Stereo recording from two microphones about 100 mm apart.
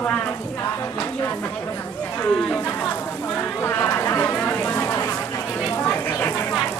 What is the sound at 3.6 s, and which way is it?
Speech, 20° left (ahead or behind).